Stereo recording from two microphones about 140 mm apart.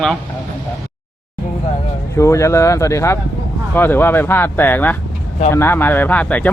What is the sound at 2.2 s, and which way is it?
Speech, 20° left (ahead or behind).